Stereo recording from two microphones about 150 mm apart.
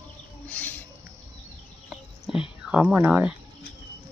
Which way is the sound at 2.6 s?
5° right (ahead or behind).